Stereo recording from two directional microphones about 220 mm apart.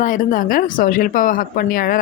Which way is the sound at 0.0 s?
35° left (ahead or behind).